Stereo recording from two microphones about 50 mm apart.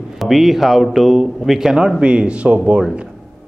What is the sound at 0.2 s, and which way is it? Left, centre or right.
A man's voice, centre.